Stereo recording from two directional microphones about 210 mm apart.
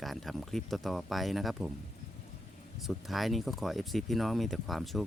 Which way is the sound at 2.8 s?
Centre (ahead or behind).